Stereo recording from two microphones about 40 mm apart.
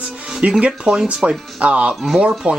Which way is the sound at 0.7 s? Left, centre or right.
Centre.